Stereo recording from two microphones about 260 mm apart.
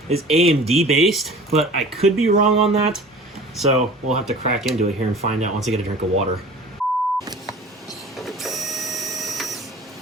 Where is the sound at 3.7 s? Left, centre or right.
Right.